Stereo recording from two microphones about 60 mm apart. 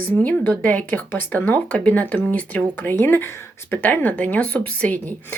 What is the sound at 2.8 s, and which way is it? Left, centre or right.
Speech, left.